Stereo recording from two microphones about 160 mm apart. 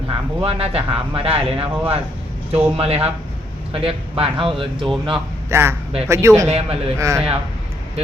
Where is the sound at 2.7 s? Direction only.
40° right (ahead or behind).